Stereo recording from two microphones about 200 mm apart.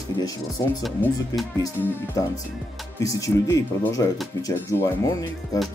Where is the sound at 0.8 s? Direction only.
Centre (ahead or behind).